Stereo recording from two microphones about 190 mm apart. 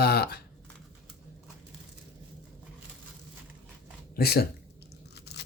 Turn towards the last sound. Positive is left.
turn(degrees=60)  # may be behind; listen again after turning